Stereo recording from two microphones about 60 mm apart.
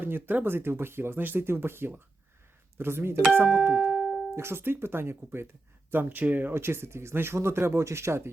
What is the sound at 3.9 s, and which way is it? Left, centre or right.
Music, right.